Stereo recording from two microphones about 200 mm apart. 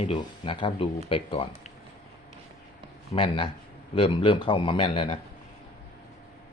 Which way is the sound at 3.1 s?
25° left (ahead or behind).